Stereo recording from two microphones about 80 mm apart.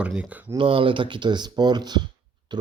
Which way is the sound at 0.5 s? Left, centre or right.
Right.